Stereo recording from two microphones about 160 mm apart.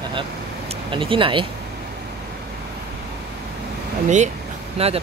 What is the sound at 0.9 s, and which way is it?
Speech, 35° right (ahead or behind).